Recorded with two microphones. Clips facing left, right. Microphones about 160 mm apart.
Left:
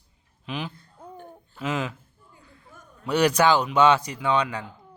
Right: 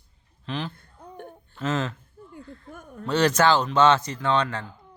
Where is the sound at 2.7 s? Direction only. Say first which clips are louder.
Right 7 dB; 60° right (ahead or behind).